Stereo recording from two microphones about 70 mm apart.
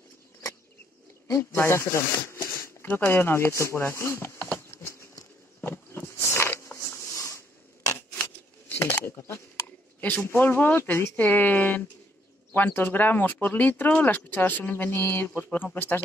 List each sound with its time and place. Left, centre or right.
1.3 s speech: left
2.3 s a sound: left
7.2 s a sound: left
9.0 s speech: left
9.9 s speech: left
11.1 s speech: left